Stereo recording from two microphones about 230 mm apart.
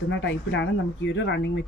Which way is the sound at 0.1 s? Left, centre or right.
Left.